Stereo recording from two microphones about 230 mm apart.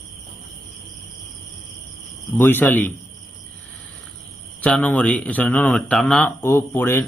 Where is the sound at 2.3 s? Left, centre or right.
Centre.